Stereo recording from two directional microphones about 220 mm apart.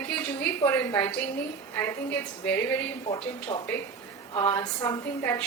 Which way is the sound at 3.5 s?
20° left (ahead or behind).